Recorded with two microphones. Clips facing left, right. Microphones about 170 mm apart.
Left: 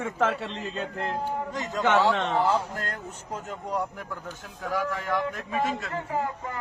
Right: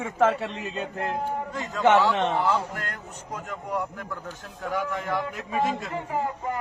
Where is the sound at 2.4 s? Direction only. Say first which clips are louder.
Even; 30° left (ahead or behind).